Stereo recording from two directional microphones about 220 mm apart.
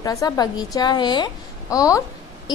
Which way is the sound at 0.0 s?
15° left (ahead or behind).